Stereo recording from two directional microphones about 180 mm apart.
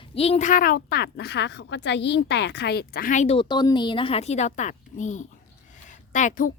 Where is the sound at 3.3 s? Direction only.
25° left (ahead or behind).